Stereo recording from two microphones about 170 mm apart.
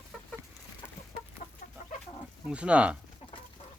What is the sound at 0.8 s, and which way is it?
Chicken, 10° left (ahead or behind).